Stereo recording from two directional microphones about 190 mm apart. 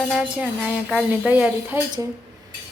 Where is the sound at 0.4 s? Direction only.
5° right (ahead or behind).